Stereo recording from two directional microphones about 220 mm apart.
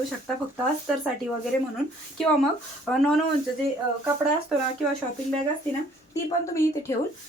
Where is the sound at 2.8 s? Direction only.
Centre (ahead or behind).